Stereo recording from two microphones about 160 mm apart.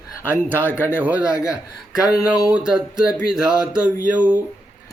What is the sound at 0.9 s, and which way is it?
A man's voice, 10° right (ahead or behind).